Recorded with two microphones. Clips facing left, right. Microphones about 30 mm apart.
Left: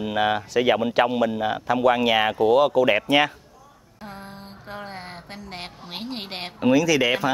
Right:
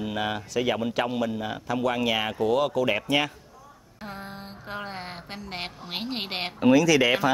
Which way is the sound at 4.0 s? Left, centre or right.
Centre.